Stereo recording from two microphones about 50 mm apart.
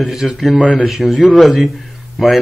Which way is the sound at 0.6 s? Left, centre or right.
Centre.